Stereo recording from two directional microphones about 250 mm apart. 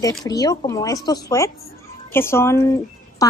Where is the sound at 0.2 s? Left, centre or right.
Centre.